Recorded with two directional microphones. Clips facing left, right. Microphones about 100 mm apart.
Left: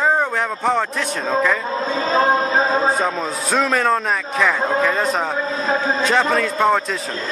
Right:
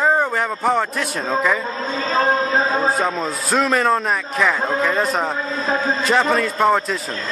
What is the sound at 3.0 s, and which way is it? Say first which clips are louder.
A man's voice: even; centre (ahead or behind).